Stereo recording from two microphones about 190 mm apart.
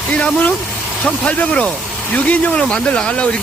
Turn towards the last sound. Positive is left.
turn(degrees=5)  # may be behind; listen again after turning